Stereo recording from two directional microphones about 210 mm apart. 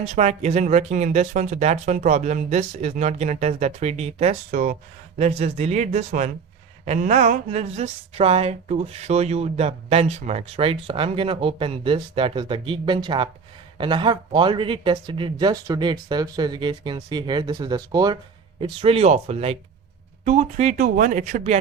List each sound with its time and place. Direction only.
0.0 s speech: 30° right (ahead or behind)